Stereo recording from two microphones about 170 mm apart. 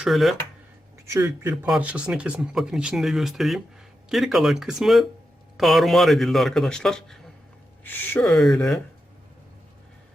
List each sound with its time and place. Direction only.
0.0 s speech: centre (ahead or behind)
1.0 s a man's voice: 15° right (ahead or behind)
1.6 s speech: 5° right (ahead or behind)